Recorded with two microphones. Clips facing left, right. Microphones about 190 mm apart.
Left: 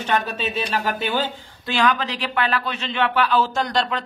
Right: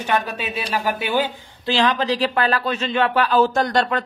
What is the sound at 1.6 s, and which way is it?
Speech, 30° right (ahead or behind).